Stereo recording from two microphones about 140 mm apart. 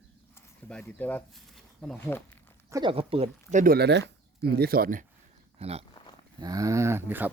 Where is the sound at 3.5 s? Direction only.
70° right (ahead or behind).